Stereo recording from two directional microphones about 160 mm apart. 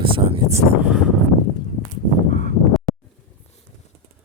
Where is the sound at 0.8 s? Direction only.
5° right (ahead or behind).